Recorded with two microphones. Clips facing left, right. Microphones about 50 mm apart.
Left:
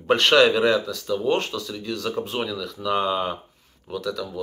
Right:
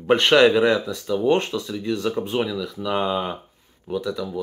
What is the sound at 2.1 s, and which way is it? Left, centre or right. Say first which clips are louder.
Speech: right 3 dB; centre.